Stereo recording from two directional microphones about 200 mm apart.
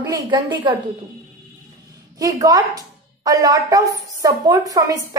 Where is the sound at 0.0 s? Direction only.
20° right (ahead or behind).